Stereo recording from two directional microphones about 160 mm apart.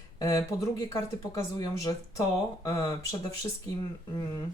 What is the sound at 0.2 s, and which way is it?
Speech, 20° left (ahead or behind).